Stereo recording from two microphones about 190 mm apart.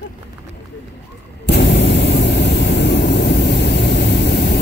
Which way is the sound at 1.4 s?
60° left (ahead or behind).